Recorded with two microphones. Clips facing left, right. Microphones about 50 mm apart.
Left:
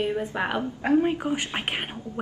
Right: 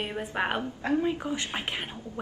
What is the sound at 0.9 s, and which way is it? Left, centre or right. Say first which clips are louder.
Speech: left 5 dB; left.